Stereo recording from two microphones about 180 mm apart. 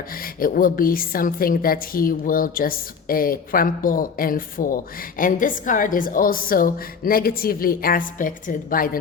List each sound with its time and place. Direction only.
0.2 s a woman's voice: 50° left (ahead or behind)